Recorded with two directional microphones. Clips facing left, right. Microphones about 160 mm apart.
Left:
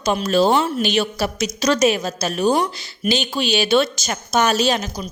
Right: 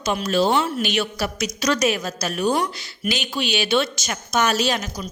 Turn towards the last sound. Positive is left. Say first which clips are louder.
# left 3 dB
turn(degrees=30)  # may be behind; listen again after turning